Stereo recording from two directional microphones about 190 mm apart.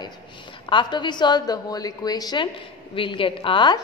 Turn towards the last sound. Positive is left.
turn(degrees=25)  # may be behind; listen again after turning